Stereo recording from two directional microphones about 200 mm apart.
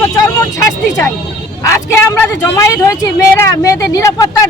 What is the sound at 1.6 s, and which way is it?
A woman's voice, 15° left (ahead or behind).